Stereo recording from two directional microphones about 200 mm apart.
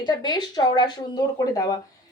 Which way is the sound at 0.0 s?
20° left (ahead or behind).